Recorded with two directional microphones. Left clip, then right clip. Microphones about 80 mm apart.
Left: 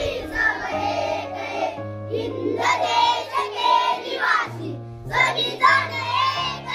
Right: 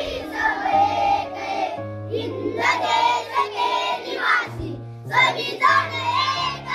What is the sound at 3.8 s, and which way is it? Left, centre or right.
Child singing, centre.